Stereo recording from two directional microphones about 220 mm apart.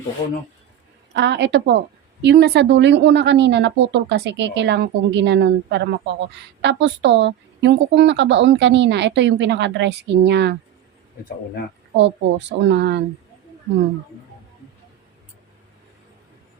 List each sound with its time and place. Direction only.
1.1 s speech: 50° right (ahead or behind)
11.9 s speech: 55° right (ahead or behind)